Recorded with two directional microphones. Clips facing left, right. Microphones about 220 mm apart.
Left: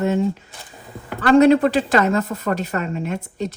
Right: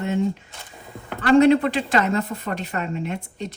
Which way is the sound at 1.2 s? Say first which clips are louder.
Left 2 dB; 40° left (ahead or behind).